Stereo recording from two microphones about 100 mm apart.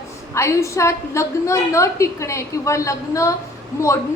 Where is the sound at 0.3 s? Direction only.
30° left (ahead or behind).